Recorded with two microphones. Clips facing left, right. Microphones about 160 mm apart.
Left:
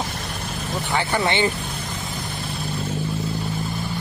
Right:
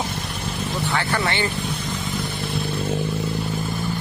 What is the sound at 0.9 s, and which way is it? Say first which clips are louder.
Speech: left 4 dB; 20° left (ahead or behind).